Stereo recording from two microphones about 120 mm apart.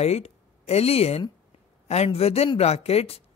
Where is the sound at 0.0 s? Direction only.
60° left (ahead or behind).